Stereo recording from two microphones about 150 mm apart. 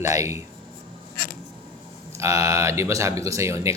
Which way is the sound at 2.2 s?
20° right (ahead or behind).